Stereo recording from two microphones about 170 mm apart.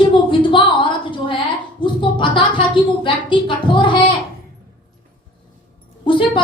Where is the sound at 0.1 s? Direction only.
30° left (ahead or behind).